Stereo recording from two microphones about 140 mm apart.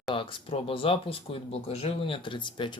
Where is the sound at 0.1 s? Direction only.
40° left (ahead or behind).